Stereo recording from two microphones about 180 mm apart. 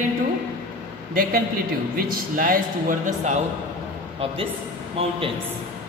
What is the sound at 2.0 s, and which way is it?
Speech, 50° right (ahead or behind).